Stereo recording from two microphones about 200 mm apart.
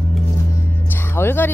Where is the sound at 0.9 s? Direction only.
10° left (ahead or behind).